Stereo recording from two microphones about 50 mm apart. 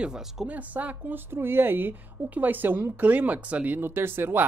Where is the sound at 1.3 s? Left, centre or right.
Right.